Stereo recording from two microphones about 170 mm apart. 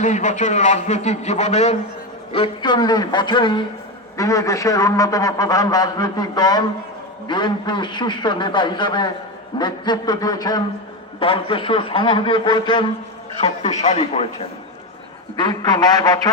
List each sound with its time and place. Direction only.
0.0 s a man's voice: 45° left (ahead or behind)
2.3 s a man's voice: 30° left (ahead or behind)
13.4 s a man's voice: 40° left (ahead or behind)
15.4 s a man's voice: 25° left (ahead or behind)